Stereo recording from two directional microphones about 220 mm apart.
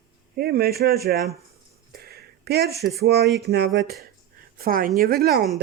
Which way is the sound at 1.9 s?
45° right (ahead or behind).